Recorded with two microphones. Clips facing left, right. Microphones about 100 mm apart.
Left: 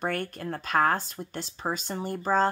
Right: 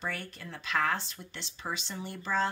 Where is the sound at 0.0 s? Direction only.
55° left (ahead or behind).